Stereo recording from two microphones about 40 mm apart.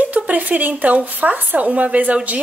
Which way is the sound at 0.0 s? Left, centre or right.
Right.